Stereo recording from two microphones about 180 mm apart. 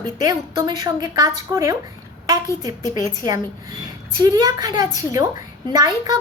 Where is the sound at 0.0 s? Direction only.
20° right (ahead or behind).